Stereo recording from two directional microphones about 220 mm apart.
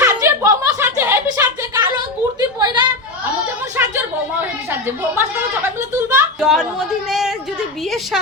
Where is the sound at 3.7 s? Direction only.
10° right (ahead or behind).